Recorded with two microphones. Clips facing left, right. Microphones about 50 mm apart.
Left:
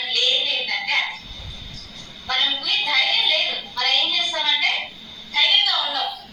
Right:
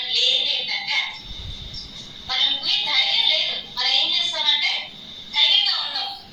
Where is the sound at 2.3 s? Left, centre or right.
Left.